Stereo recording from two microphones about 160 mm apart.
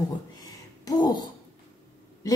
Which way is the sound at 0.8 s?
25° left (ahead or behind).